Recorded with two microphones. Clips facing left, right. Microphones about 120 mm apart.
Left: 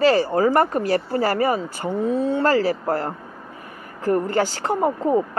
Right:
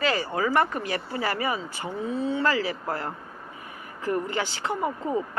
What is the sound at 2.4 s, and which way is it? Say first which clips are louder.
Speech: left 7 dB; 40° left (ahead or behind).